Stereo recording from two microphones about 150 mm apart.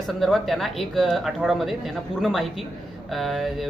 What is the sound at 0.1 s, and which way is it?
Speech, centre (ahead or behind).